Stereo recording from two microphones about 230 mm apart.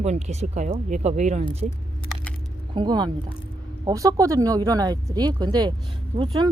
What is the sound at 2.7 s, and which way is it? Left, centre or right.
Speech, centre.